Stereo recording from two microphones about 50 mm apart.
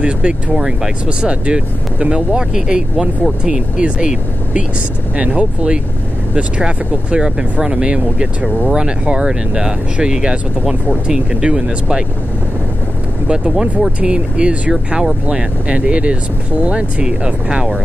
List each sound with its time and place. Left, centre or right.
0.0 s speech: centre
1.0 s speech: right
5.1 s speech: right
13.3 s speech: centre